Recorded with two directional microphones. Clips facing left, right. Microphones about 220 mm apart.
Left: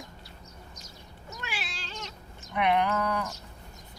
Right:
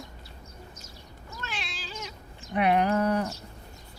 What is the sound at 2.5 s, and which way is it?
Speech, 35° right (ahead or behind).